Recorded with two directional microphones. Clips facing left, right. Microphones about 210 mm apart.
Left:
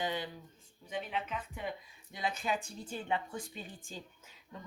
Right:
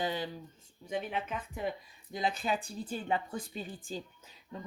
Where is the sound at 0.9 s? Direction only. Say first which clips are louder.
Right 3 dB; 45° right (ahead or behind).